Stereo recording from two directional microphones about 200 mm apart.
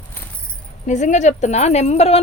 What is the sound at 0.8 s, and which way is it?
Speech, 35° left (ahead or behind).